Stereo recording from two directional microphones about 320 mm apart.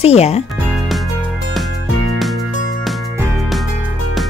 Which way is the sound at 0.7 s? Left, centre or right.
Centre.